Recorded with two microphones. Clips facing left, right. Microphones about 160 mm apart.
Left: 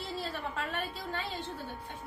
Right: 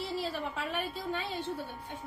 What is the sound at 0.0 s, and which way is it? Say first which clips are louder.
A woman's voice: right 3 dB; 10° right (ahead or behind).